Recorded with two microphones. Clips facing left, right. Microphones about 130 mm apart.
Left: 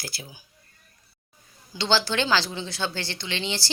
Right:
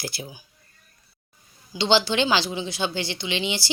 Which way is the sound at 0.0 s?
20° right (ahead or behind).